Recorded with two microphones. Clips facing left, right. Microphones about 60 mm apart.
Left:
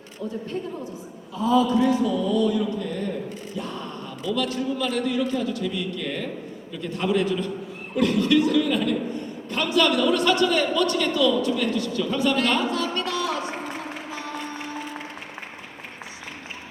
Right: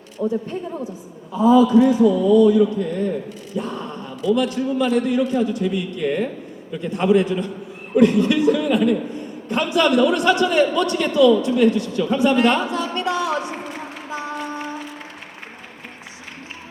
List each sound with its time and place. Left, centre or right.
0.2 s a man's voice: right
1.4 s a man's voice: centre